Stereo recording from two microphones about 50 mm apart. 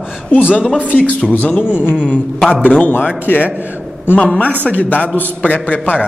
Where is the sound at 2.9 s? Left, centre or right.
Left.